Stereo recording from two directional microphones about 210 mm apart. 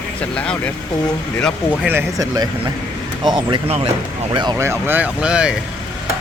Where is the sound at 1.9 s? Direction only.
15° right (ahead or behind).